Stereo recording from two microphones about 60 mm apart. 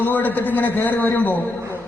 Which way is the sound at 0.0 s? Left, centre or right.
Left.